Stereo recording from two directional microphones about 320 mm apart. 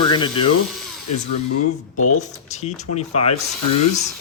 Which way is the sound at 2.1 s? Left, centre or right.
Left.